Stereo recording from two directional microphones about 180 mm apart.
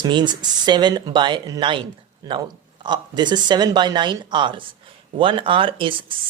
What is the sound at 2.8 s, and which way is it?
Speech, 25° right (ahead or behind).